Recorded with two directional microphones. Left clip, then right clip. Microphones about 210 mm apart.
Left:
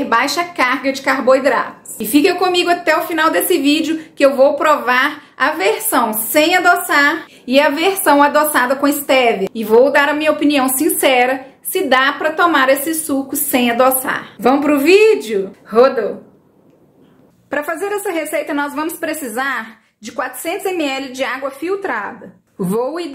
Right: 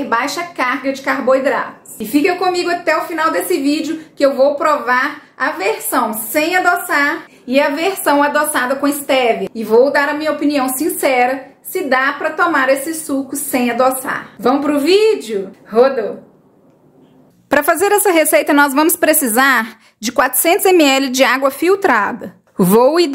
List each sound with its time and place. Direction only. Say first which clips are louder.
0.0 s a woman's voice: left 2 dB; 15° left (ahead or behind)
13.1 s a woman's voice: left 1 dB; 30° left (ahead or behind)
13.5 s a woman's voice: left 1 dB; 15° left (ahead or behind)
17.5 s a woman's voice: right 7 dB; 50° right (ahead or behind)